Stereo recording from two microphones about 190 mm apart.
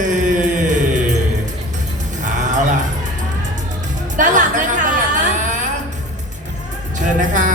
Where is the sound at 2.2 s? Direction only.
40° right (ahead or behind).